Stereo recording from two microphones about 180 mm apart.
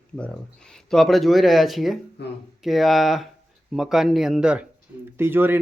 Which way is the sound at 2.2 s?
65° left (ahead or behind).